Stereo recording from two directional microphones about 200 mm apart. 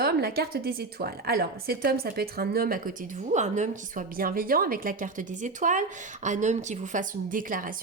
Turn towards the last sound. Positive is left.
turn(degrees=-45)  # may be behind; listen again after turning